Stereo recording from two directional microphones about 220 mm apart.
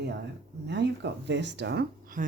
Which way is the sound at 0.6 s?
50° right (ahead or behind).